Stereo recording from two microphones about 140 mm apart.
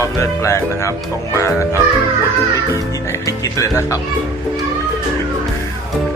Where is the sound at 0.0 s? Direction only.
20° left (ahead or behind).